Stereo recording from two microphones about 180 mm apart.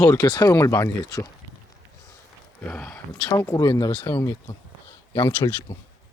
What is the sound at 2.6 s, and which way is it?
Speech, 5° left (ahead or behind).